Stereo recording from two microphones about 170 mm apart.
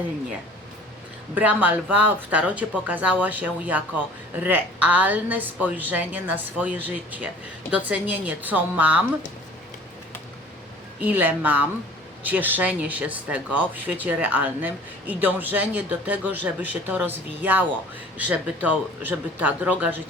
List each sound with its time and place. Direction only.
1.4 s speech: 10° right (ahead or behind)
11.0 s speech: 10° right (ahead or behind)